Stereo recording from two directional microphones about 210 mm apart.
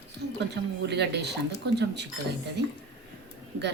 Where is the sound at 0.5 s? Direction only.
55° right (ahead or behind).